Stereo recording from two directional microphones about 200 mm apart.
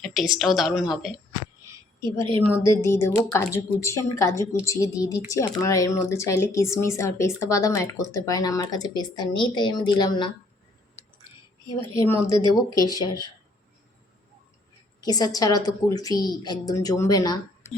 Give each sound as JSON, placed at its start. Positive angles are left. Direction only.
{"t": 0.0, "sound": "a woman's voice", "side_deg": 0}
{"t": 2.5, "sound": "speech", "side_deg": 15}
{"t": 11.9, "sound": "speech", "side_deg": 15}
{"t": 15.0, "sound": "speech", "side_deg": 20}